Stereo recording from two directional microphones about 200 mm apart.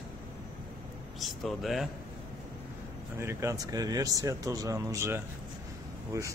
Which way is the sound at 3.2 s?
15° right (ahead or behind).